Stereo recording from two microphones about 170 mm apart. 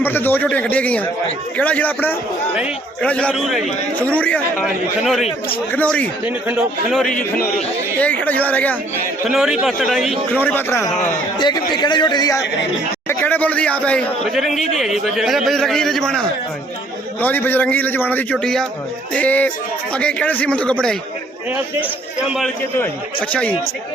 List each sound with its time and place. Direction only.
0.0 s a man's voice: 10° left (ahead or behind)
6.2 s a man's voice: 5° right (ahead or behind)
7.9 s a man's voice: 10° left (ahead or behind)
9.3 s a man's voice: 5° right (ahead or behind)
10.3 s a man's voice: 10° left (ahead or behind)
13.1 s a man's voice: 10° left (ahead or behind)
22.3 s a man's voice: centre (ahead or behind)